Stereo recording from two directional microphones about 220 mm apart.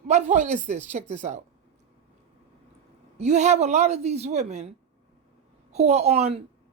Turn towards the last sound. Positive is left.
turn(degrees=-30)  # may be behind; listen again after turning